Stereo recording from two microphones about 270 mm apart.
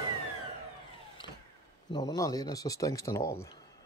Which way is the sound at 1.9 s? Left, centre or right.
Centre.